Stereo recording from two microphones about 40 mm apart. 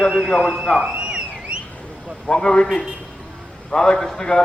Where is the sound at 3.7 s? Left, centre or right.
Centre.